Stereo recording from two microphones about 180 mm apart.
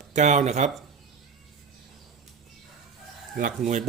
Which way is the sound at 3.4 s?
45° right (ahead or behind).